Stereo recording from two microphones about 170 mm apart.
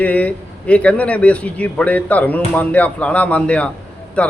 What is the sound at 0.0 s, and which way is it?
A man's voice, 10° left (ahead or behind).